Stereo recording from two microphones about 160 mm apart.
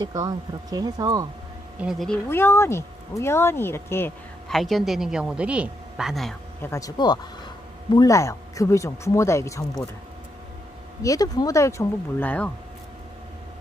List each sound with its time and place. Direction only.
0.0 s speech: 25° right (ahead or behind)
1.8 s a woman's voice: centre (ahead or behind)
2.2 s speech: 15° left (ahead or behind)
4.5 s a woman's voice: centre (ahead or behind)
6.6 s speech: 20° left (ahead or behind)
11.0 s speech: 20° left (ahead or behind)